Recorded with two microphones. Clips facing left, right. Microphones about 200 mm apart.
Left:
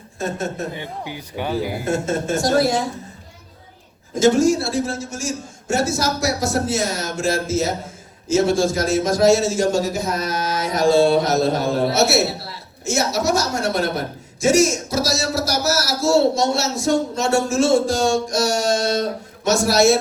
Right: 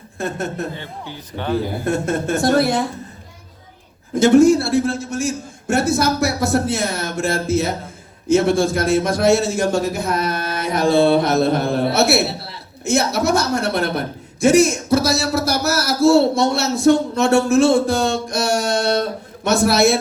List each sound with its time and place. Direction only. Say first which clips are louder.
0.7 s a man's voice: left 2 dB; 15° left (ahead or behind)
1.8 s speech: right 1 dB; 60° right (ahead or behind)
4.1 s speech: right 4 dB; 60° right (ahead or behind)